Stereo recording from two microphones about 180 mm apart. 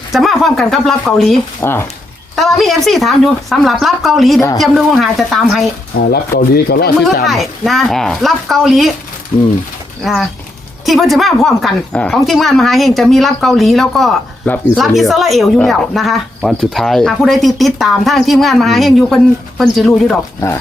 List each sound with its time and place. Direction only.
0.1 s speech: centre (ahead or behind)
1.6 s speech: 15° left (ahead or behind)
2.3 s speech: centre (ahead or behind)
6.0 s speech: 60° left (ahead or behind)
7.3 s speech: centre (ahead or behind)
10.0 s speech: centre (ahead or behind)